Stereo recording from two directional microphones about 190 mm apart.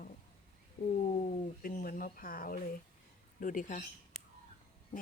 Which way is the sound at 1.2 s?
45° left (ahead or behind).